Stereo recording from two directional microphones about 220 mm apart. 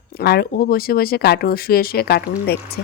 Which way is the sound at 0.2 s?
45° left (ahead or behind).